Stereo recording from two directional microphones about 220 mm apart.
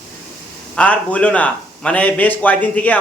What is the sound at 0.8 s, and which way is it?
Speech, 5° left (ahead or behind).